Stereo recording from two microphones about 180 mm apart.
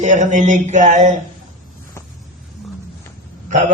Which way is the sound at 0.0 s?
45° right (ahead or behind).